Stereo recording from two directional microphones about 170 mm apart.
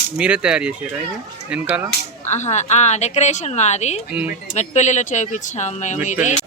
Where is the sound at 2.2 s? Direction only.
45° left (ahead or behind).